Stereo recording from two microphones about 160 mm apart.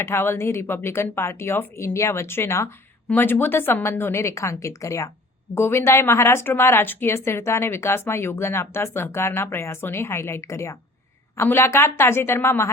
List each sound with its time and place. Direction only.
0.0 s a woman's voice: 15° left (ahead or behind)